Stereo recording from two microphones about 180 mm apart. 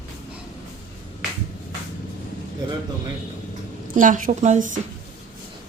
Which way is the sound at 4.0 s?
45° right (ahead or behind).